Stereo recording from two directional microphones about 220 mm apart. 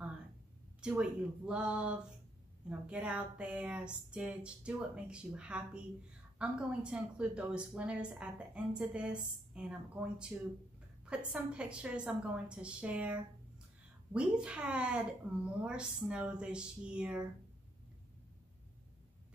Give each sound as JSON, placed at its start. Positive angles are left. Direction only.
{"t": 0.7, "sound": "speech", "side_deg": -5}